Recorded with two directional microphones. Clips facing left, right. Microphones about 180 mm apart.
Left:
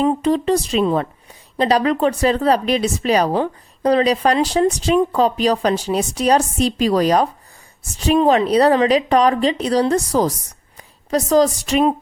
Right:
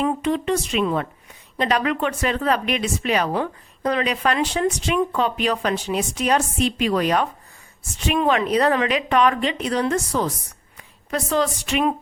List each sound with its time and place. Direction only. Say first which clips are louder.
0.0 s a woman's voice: left 5 dB; 35° left (ahead or behind)